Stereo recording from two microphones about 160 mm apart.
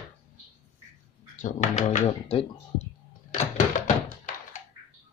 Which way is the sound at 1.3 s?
50° left (ahead or behind).